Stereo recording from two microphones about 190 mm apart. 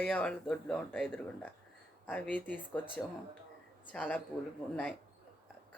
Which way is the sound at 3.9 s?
5° left (ahead or behind).